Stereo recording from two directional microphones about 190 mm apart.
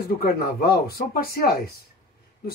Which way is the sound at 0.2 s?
50° left (ahead or behind).